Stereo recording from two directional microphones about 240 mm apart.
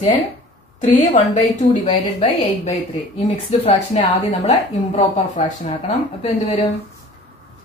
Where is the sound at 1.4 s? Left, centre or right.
Centre.